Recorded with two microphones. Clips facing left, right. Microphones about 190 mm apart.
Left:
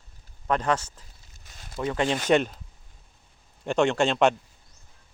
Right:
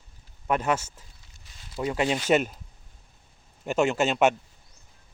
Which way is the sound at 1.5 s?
50° left (ahead or behind).